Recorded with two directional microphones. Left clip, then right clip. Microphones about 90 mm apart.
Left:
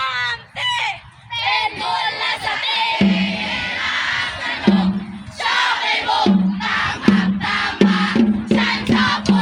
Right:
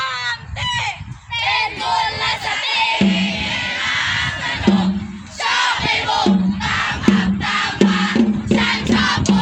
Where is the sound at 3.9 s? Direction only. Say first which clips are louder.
Right 1 dB; 5° left (ahead or behind).